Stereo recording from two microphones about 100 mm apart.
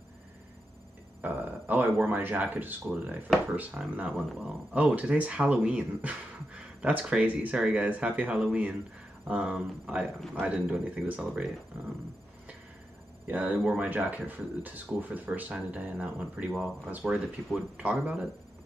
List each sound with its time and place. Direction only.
1.2 s speech: 15° right (ahead or behind)
10.0 s a man's voice: centre (ahead or behind)
10.4 s speech: 10° right (ahead or behind)
13.3 s speech: 15° right (ahead or behind)
16.5 s a man's voice: 5° right (ahead or behind)